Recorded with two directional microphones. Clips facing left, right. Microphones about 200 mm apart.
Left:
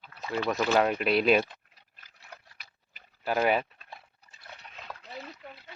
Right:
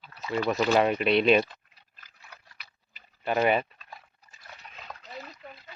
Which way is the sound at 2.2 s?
50° left (ahead or behind).